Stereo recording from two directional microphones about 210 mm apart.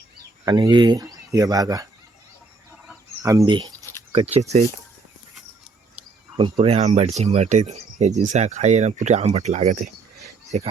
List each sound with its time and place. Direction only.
0.4 s speech: 20° right (ahead or behind)
3.2 s speech: 20° right (ahead or behind)
6.3 s speech: 25° right (ahead or behind)